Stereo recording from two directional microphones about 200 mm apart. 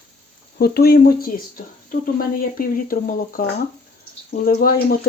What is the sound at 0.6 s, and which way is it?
Speech, 50° left (ahead or behind).